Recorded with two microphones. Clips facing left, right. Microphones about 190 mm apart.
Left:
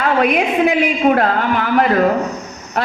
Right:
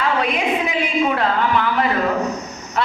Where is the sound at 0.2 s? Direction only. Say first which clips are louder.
Left 6 dB; 60° left (ahead or behind).